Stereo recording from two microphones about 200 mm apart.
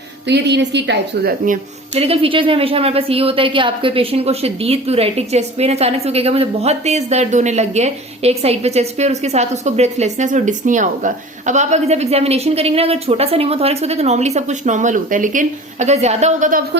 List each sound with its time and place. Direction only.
0.3 s a woman's voice: 60° right (ahead or behind)
2.0 s a woman's voice: 30° right (ahead or behind)